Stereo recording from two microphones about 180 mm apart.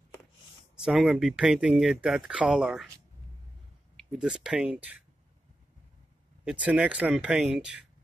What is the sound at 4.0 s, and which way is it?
Speech, centre (ahead or behind).